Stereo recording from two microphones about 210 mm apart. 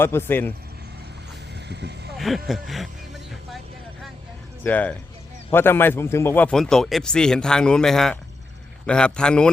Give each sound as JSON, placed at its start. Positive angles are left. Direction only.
{"t": 0.0, "sound": "speech", "side_deg": 10}
{"t": 1.6, "sound": "vehicle", "side_deg": -55}
{"t": 2.1, "sound": "speech", "side_deg": 0}
{"t": 4.6, "sound": "speech", "side_deg": 10}